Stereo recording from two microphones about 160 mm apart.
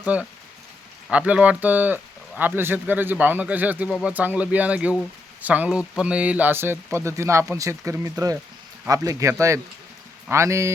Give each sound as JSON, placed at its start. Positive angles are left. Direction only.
{"t": 0.0, "sound": "speech", "side_deg": -10}